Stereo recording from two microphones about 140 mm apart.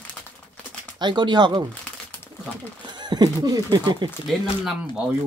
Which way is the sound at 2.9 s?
30° right (ahead or behind).